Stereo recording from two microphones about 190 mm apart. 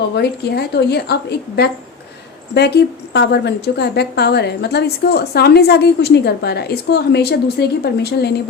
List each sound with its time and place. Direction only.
0.2 s a woman's voice: 60° left (ahead or behind)
2.6 s a woman's voice: 60° left (ahead or behind)